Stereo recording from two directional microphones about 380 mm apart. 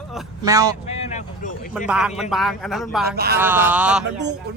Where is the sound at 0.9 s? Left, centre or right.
Centre.